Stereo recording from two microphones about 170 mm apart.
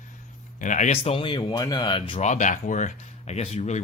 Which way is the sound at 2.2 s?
45° left (ahead or behind).